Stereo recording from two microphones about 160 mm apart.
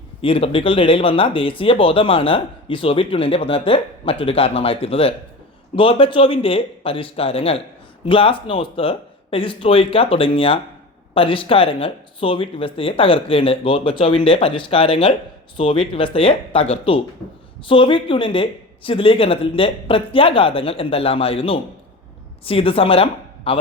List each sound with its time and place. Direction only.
0.2 s speech: 35° left (ahead or behind)